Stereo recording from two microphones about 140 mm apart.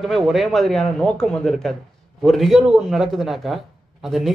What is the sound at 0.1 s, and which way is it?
A man's voice, centre (ahead or behind).